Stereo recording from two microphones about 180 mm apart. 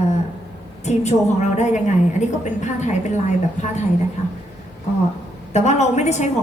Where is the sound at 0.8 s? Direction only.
40° left (ahead or behind).